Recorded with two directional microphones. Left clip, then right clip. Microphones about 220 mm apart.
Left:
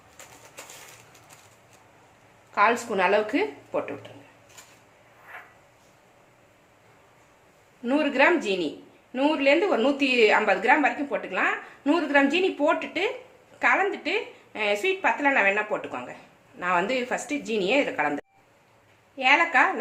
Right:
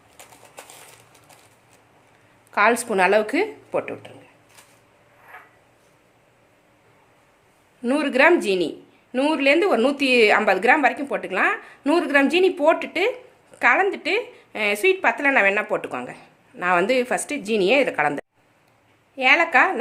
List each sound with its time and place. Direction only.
2.6 s a woman's voice: 55° right (ahead or behind)
7.9 s a woman's voice: 55° right (ahead or behind)